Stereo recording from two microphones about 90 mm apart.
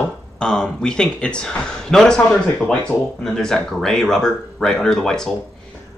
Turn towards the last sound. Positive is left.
turn(degrees=5)  # may be behind; listen again after turning